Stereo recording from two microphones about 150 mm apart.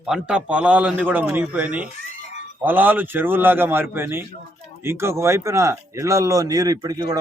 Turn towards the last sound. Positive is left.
turn(degrees=-25)  # may be behind; listen again after turning